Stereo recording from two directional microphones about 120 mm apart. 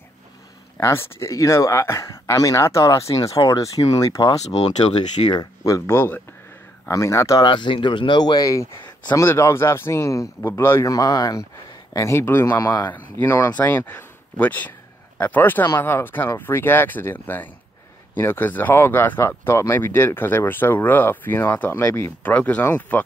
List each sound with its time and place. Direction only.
0.7 s speech: 20° left (ahead or behind)
4.5 s speech: 60° left (ahead or behind)
5.7 s speech: 20° left (ahead or behind)